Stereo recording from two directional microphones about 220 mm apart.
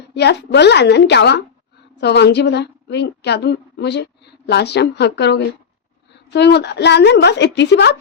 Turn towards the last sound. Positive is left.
turn(degrees=50)  # may be behind; listen again after turning